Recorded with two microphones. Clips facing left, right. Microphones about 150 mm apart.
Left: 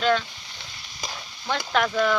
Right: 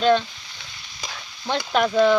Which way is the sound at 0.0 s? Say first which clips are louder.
Right 4 dB; 20° right (ahead or behind).